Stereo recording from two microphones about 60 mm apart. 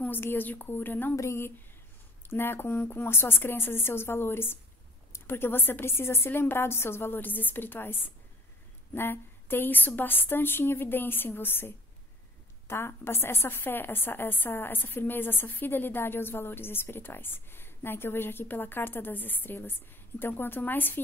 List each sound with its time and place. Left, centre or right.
0.0 s a woman's voice: left
1.1 s speech: left
2.2 s a woman's voice: left